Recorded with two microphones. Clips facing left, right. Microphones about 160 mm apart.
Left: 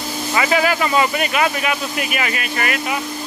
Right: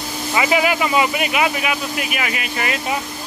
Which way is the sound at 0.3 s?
15° right (ahead or behind).